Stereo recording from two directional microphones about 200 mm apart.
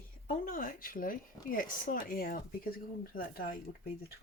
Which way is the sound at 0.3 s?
45° left (ahead or behind).